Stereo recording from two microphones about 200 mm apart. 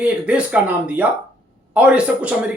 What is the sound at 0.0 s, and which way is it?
A man's voice, 5° right (ahead or behind).